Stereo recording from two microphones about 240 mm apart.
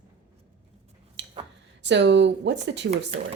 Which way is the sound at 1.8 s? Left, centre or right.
Right.